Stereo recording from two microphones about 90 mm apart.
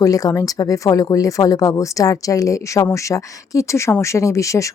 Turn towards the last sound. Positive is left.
turn(degrees=35)  # may be behind; listen again after turning